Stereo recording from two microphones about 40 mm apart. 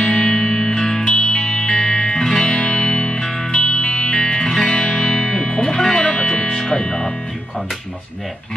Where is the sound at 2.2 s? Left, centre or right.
Centre.